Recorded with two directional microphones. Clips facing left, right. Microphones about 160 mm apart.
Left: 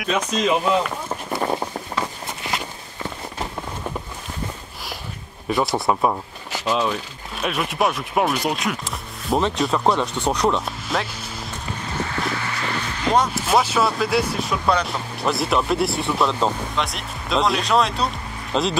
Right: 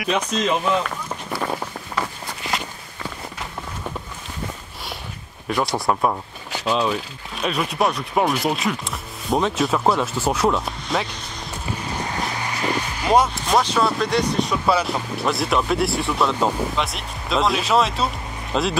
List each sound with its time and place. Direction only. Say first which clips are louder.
0.0 s speech: even; 5° left (ahead or behind)
1.0 s run: left 2 dB; 25° left (ahead or behind)
5.5 s speech: left 1 dB; centre (ahead or behind)
12.4 s music: right 3 dB; 15° right (ahead or behind)
13.3 s speech: left 1 dB; 5° left (ahead or behind)